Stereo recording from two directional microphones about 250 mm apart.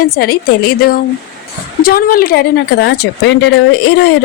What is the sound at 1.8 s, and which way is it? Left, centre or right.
Speech, left.